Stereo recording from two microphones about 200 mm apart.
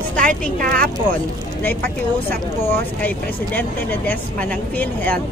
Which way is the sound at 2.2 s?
10° left (ahead or behind).